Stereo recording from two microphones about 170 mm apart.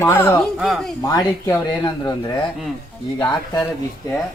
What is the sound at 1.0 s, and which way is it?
Speech, 20° left (ahead or behind).